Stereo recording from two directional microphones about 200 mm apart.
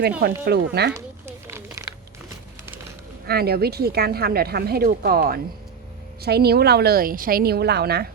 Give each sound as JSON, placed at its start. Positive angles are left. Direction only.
{"t": 0.4, "sound": "speech", "side_deg": -55}
{"t": 1.5, "sound": "a sound", "side_deg": -15}
{"t": 3.2, "sound": "speech", "side_deg": -50}